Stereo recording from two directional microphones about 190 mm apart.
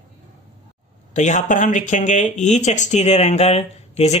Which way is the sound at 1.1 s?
40° left (ahead or behind).